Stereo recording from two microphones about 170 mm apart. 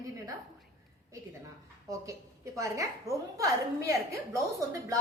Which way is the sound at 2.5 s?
20° right (ahead or behind).